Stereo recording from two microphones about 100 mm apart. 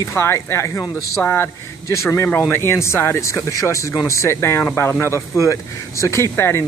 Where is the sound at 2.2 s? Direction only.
10° left (ahead or behind).